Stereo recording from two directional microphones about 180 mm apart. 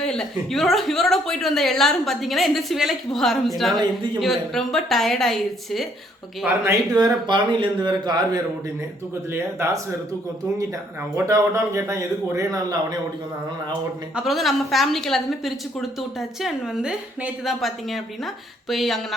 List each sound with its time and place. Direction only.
0.0 s a woman's voice: 5° left (ahead or behind)
3.8 s a man's voice: 25° right (ahead or behind)
4.2 s a woman's voice: centre (ahead or behind)
6.4 s a man's voice: 20° right (ahead or behind)
9.3 s a man's voice: 15° right (ahead or behind)
11.1 s a man's voice: 15° right (ahead or behind)
14.2 s a woman's voice: centre (ahead or behind)